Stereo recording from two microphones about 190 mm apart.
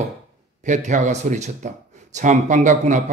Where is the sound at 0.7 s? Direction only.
40° right (ahead or behind).